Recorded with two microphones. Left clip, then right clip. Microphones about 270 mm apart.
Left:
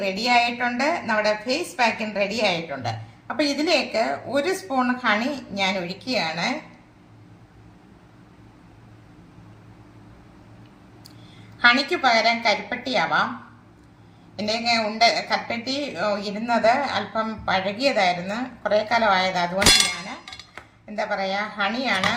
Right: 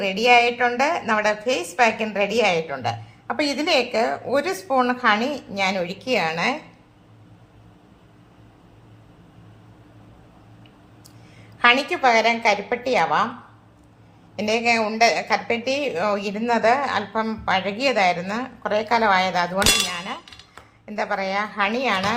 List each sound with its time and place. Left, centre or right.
0.0 s a woman's voice: centre
11.6 s a woman's voice: centre
14.3 s a woman's voice: centre
20.0 s clang: centre
20.8 s a woman's voice: centre